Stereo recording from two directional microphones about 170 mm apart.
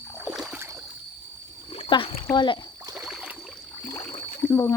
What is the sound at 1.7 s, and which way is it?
Wild animals, 35° left (ahead or behind).